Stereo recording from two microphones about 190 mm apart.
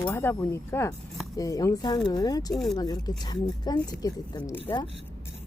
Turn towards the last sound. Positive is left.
turn(degrees=25)  # may be behind; listen again after turning